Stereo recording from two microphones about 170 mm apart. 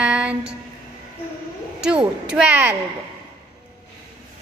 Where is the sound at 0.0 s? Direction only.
5° right (ahead or behind).